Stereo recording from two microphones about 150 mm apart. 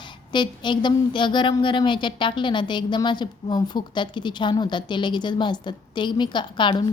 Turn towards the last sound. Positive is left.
turn(degrees=30)  # may be behind; listen again after turning